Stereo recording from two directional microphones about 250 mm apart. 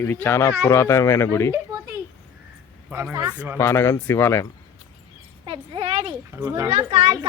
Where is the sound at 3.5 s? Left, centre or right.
Centre.